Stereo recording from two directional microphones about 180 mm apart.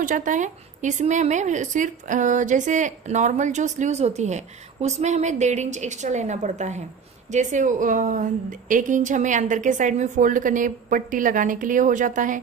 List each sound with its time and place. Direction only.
0.0 s a woman's voice: 45° right (ahead or behind)